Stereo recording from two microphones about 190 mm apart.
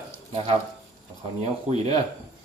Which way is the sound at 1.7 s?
35° right (ahead or behind).